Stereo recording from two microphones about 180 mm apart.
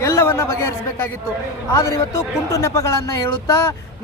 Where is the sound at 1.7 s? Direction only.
15° left (ahead or behind).